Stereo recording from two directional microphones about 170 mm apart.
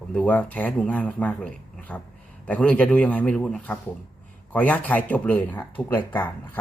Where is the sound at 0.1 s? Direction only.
10° left (ahead or behind).